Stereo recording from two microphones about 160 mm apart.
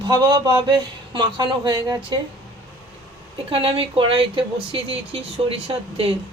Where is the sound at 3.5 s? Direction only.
35° right (ahead or behind).